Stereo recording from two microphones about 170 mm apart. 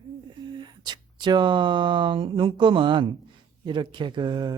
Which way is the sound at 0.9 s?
25° right (ahead or behind).